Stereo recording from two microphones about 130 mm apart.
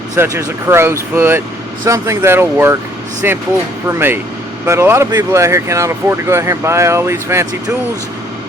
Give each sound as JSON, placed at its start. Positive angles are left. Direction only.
{"t": 0.2, "sound": "speech", "side_deg": -20}